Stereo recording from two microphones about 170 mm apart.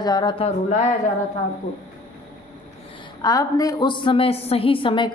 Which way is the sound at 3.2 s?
20° left (ahead or behind).